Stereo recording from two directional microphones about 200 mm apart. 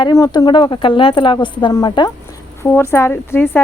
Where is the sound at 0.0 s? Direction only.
20° left (ahead or behind).